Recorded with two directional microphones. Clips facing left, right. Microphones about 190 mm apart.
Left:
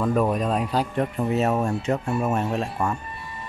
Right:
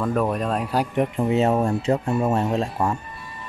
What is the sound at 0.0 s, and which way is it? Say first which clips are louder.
Speech: left 1 dB; centre (ahead or behind).